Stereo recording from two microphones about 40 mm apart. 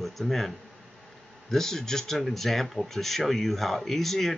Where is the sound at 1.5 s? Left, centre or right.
Centre.